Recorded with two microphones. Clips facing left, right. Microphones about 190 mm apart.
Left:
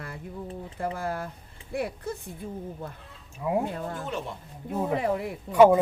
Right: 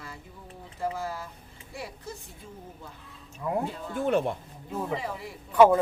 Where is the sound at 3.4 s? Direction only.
10° left (ahead or behind).